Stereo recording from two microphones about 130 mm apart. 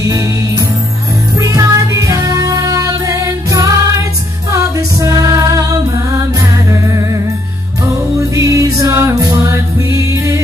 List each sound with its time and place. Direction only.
0.0 s music: 25° right (ahead or behind)
8.4 s music: 25° right (ahead or behind)